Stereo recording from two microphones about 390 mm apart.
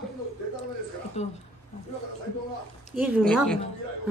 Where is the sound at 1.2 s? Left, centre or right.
Centre.